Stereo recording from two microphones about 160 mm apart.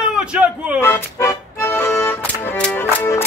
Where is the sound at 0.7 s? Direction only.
15° left (ahead or behind).